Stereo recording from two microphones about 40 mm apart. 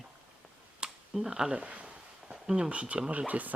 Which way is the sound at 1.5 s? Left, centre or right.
Right.